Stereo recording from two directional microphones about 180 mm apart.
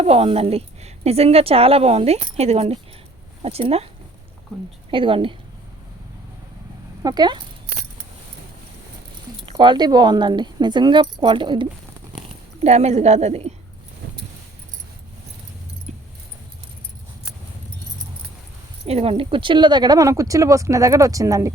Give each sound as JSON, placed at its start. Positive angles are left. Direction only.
{"t": 0.0, "sound": "a woman's voice", "side_deg": -35}
{"t": 4.9, "sound": "speech", "side_deg": -30}
{"t": 7.0, "sound": "speech", "side_deg": -25}
{"t": 9.5, "sound": "speech", "side_deg": -25}
{"t": 15.9, "sound": "keys jangling", "side_deg": -40}
{"t": 18.9, "sound": "speech", "side_deg": -35}